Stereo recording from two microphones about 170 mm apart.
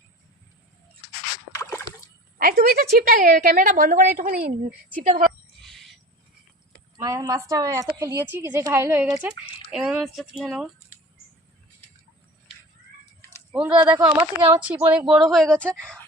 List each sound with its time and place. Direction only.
2.4 s a woman's voice: 60° right (ahead or behind)
5.5 s owl: centre (ahead or behind)
6.9 s a woman's voice: 20° right (ahead or behind); by 10.7 s centre (ahead or behind)
13.5 s a woman's voice: 5° right (ahead or behind)